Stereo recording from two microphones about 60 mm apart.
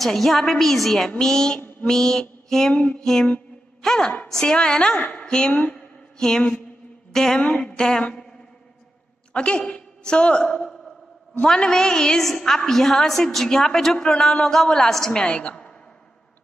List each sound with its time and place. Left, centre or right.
0.0 s a woman's voice: centre
1.6 s mantra: left
1.9 s mantra: centre
2.7 s a sound: left
3.0 s a woman's voice: centre
5.7 s mantra: centre
7.1 s a sound: centre
7.3 s a woman's voice: centre
9.3 s a man's voice: centre